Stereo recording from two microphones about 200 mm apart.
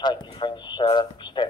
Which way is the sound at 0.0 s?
20° left (ahead or behind).